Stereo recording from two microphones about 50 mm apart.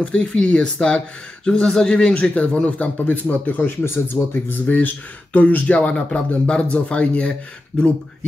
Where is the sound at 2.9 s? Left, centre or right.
Left.